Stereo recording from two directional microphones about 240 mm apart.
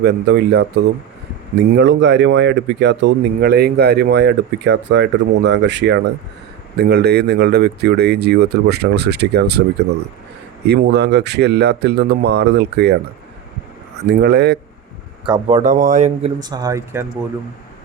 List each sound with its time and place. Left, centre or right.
0.0 s speech: right
14.1 s speech: right
15.3 s speech: right
16.4 s speech: centre